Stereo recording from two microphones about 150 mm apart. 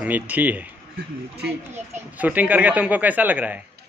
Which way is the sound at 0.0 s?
10° right (ahead or behind).